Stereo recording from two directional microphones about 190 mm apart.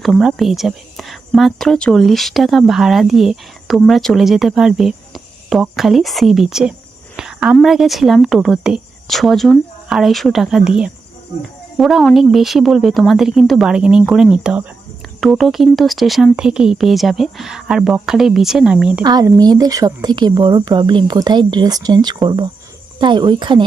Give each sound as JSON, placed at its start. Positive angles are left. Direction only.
{"t": 0.0, "sound": "speech", "side_deg": 0}
{"t": 7.2, "sound": "a sound", "side_deg": -5}
{"t": 7.5, "sound": "speech", "side_deg": 0}
{"t": 19.0, "sound": "speech", "side_deg": -20}